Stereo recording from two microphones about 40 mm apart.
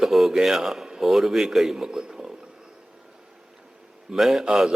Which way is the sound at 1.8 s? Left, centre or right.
Centre.